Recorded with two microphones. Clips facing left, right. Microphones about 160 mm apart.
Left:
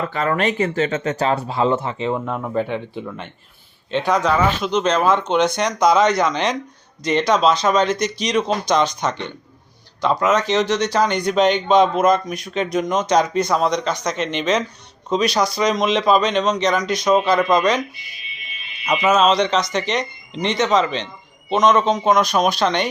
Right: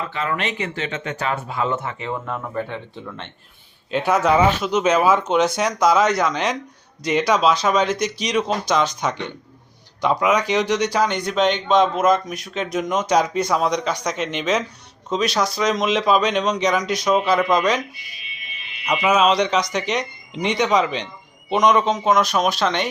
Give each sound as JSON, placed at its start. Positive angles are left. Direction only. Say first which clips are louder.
{"t": 0.1, "sound": "speech", "louder": "left 5 dB", "side_deg": 45}
{"t": 3.9, "sound": "speech", "louder": "right 1 dB", "side_deg": -5}
{"t": 19.0, "sound": "speech", "louder": "left 1 dB", "side_deg": -10}